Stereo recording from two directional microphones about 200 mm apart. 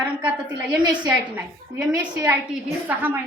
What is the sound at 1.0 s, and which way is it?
A woman's voice, 5° right (ahead or behind).